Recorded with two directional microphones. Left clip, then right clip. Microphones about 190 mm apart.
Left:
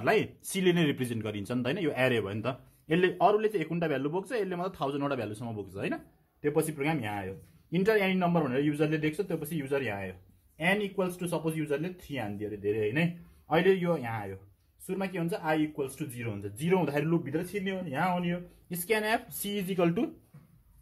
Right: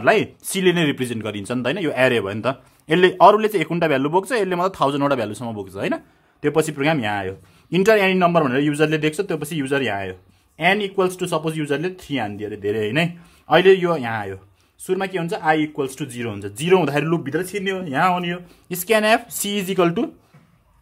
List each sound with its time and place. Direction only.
0.0 s a man's voice: 20° right (ahead or behind)
6.4 s speech: 50° right (ahead or behind)